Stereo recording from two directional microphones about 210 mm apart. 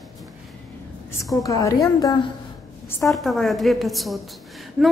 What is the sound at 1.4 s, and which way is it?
Speech, 15° left (ahead or behind).